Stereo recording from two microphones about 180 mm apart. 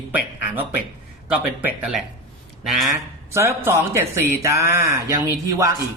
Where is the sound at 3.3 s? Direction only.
15° right (ahead or behind).